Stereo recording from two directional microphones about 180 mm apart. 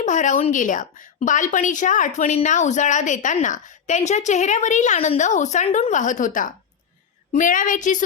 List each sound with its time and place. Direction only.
0.0 s a woman's voice: 45° left (ahead or behind)